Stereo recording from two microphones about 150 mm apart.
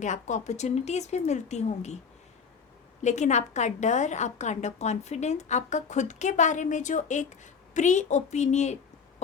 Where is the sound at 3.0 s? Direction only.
50° left (ahead or behind).